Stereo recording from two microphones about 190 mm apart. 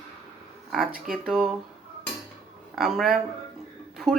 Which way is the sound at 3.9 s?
Centre (ahead or behind).